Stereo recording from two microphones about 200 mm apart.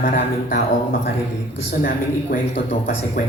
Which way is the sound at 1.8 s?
45° left (ahead or behind).